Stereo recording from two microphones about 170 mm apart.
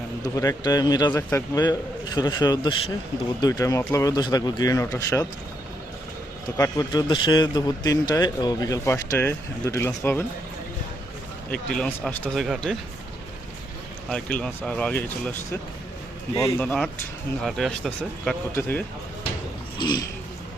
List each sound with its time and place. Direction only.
0.3 s a man's voice: 20° left (ahead or behind)
6.6 s a man's voice: 20° left (ahead or behind)
11.5 s speech: 5° left (ahead or behind)
14.1 s speech: 5° left (ahead or behind)
16.6 s speech: 5° left (ahead or behind)
19.8 s a man's voice: 25° left (ahead or behind)